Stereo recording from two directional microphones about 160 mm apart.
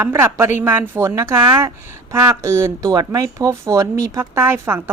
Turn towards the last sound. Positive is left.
turn(degrees=-15)  # may be behind; listen again after turning